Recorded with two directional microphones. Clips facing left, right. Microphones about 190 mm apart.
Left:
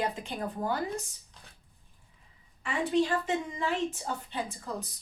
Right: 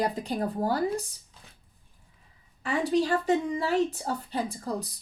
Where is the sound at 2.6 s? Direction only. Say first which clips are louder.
Right 2 dB; 40° right (ahead or behind).